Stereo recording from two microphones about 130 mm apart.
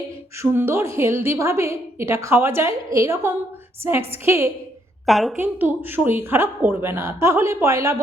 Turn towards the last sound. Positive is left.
turn(degrees=-25)  # may be behind; listen again after turning